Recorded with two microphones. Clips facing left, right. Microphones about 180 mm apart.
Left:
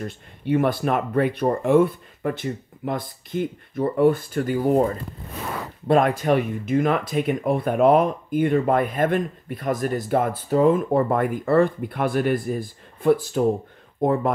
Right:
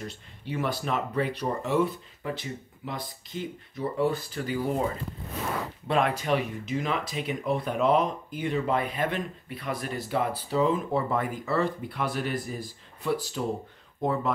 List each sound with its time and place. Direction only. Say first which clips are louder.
0.0 s speech: left 8 dB; 55° left (ahead or behind)